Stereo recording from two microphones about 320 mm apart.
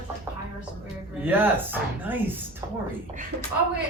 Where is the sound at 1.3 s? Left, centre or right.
Centre.